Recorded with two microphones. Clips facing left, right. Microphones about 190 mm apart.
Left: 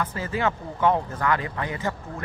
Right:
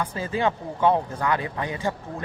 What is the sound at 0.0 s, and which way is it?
Speech, 15° right (ahead or behind).